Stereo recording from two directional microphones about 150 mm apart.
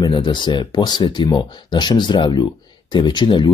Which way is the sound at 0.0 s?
30° left (ahead or behind).